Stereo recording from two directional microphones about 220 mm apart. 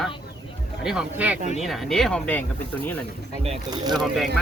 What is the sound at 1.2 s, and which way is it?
Speech, 5° right (ahead or behind).